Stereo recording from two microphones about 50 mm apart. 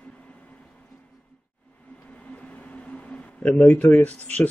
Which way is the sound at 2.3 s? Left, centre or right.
Left.